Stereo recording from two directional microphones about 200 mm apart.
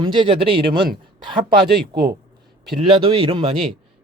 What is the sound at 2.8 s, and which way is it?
Speech, 25° right (ahead or behind).